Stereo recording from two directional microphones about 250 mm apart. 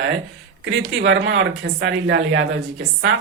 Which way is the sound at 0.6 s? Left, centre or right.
Right.